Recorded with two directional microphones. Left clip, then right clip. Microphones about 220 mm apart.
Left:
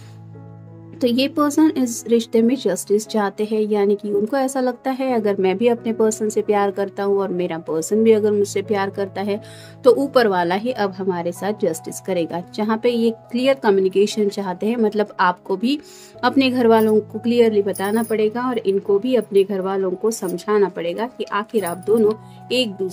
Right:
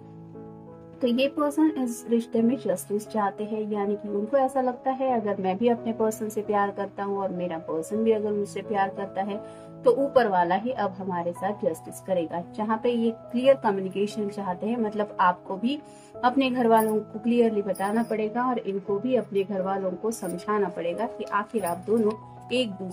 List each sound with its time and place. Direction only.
0.9 s a woman's voice: 45° left (ahead or behind)